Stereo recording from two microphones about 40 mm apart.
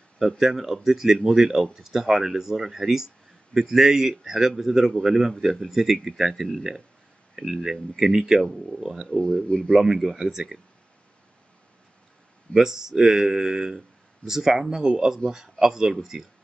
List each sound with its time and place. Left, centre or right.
0.4 s speech: centre
7.3 s speech: centre
9.3 s speech: centre
9.8 s speech: centre
12.5 s speech: centre
14.8 s speech: right
15.2 s speech: centre